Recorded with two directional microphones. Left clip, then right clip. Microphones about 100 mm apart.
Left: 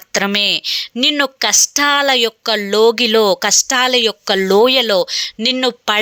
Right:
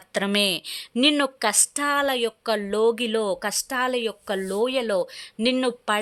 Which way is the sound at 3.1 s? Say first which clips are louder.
Left 12 dB; 40° left (ahead or behind).